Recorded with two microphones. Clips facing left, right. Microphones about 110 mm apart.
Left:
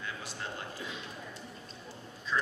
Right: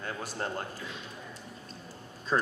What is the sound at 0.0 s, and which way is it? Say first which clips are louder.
Speech: right 5 dB; 45° right (ahead or behind).